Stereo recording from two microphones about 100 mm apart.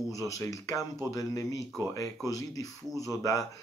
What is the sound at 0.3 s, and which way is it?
Speech, 35° left (ahead or behind).